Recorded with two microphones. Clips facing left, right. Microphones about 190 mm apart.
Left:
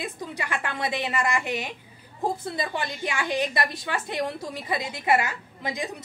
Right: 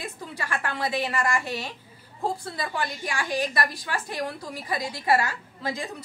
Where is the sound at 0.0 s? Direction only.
20° left (ahead or behind).